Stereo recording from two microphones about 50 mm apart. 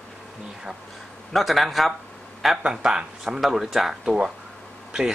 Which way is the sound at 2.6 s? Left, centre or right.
Centre.